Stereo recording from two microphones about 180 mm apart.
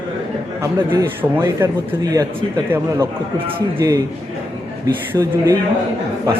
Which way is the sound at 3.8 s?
20° right (ahead or behind).